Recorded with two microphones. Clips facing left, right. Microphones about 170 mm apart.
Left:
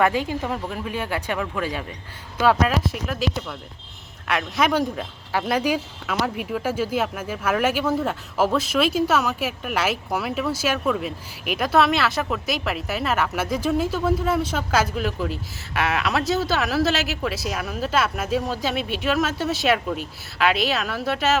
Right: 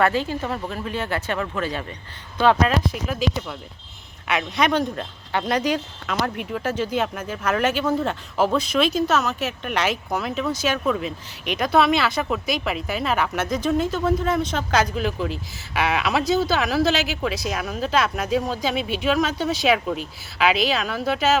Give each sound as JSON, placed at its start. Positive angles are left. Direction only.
{"t": 0.0, "sound": "speech", "side_deg": 15}